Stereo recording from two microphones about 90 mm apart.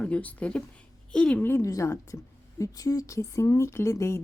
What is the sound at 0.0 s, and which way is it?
A woman's voice, 15° left (ahead or behind).